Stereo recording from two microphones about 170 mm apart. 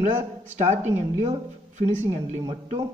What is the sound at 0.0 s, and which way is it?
Speech, 45° right (ahead or behind).